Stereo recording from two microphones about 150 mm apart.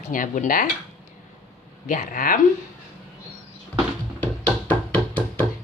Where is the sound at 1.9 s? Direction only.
65° left (ahead or behind).